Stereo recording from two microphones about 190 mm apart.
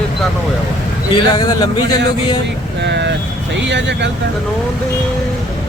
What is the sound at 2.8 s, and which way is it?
Speech, 65° right (ahead or behind).